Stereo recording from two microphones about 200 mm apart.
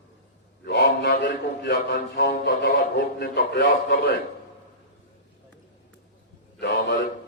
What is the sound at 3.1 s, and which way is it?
Speech, 60° left (ahead or behind).